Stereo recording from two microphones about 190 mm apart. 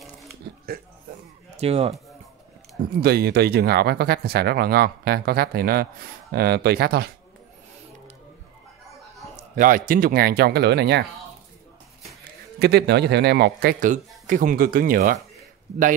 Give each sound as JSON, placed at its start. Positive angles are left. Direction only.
{"t": 1.6, "sound": "speech", "side_deg": -30}
{"t": 3.0, "sound": "speech", "side_deg": -55}
{"t": 9.6, "sound": "speech", "side_deg": -45}
{"t": 12.5, "sound": "speech", "side_deg": -60}